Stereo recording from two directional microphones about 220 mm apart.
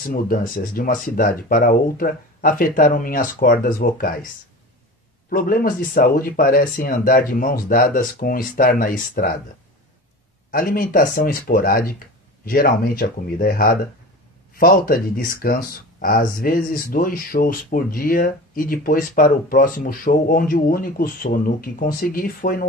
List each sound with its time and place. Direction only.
0.0 s speech: 40° left (ahead or behind)
5.3 s speech: 40° left (ahead or behind)
10.5 s speech: 40° left (ahead or behind)